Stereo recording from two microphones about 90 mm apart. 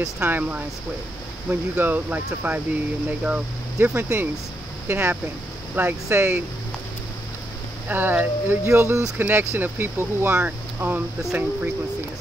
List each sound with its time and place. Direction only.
0.2 s speech: 20° right (ahead or behind)
7.9 s speech: 20° right (ahead or behind)